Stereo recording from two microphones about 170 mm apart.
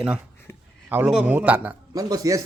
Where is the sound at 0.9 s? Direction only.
10° right (ahead or behind).